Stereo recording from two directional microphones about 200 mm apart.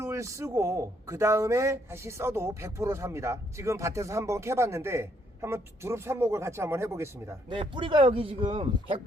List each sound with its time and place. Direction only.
0.0 s speech: 15° right (ahead or behind)
7.5 s speech: 25° right (ahead or behind)